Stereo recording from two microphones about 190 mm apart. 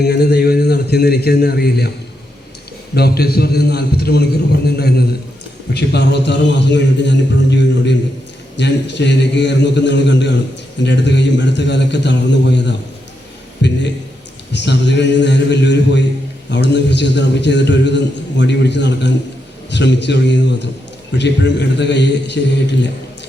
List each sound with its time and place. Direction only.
0.0 s a man's voice: 55° left (ahead or behind)
2.9 s a man's voice: 55° left (ahead or behind)
8.5 s a man's voice: 65° left (ahead or behind)